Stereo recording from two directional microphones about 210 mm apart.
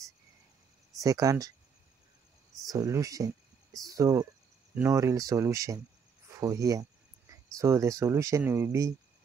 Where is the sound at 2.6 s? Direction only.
15° right (ahead or behind).